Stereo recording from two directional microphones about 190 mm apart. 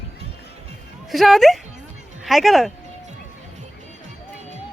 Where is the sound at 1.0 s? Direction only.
Centre (ahead or behind).